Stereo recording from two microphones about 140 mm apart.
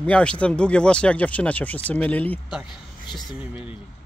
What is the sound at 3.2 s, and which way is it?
Speech, 5° right (ahead or behind).